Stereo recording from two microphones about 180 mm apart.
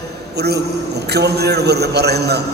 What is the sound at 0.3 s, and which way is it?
A man's voice, 65° right (ahead or behind).